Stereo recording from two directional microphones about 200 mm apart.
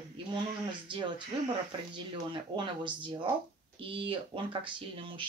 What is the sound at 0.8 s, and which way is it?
Speech, 25° right (ahead or behind).